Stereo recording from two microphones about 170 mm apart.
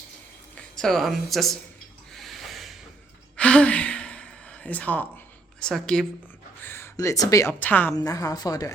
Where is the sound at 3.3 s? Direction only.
5° left (ahead or behind).